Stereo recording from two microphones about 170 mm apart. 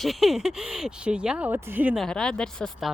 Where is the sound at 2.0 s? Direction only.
5° left (ahead or behind).